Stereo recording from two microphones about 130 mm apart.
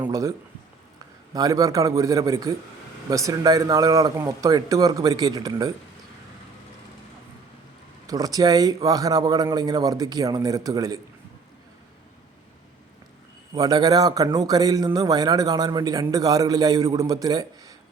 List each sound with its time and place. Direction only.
0.1 s speech: 25° right (ahead or behind)
8.0 s speech: 30° right (ahead or behind)
13.5 s speech: 30° right (ahead or behind)